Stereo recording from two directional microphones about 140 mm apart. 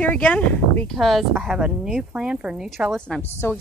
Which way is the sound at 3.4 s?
15° left (ahead or behind).